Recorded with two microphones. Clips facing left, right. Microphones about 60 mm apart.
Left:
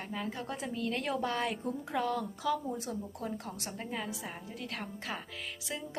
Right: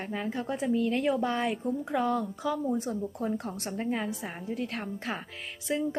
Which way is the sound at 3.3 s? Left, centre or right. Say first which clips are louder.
Right 7 dB; right.